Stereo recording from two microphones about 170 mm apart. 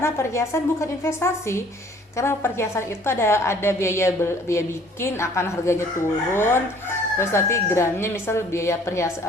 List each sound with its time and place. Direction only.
0.0 s a woman's voice: 15° left (ahead or behind)